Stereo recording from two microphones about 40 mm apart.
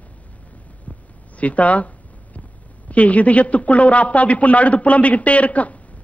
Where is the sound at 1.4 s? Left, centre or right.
Left.